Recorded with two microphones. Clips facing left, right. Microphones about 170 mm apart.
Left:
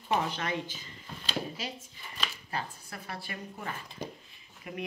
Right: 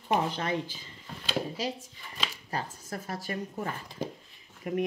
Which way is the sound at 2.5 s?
40° right (ahead or behind).